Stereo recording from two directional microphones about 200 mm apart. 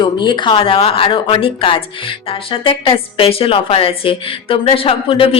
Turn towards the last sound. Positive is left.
turn(degrees=25)  # may be behind; listen again after turning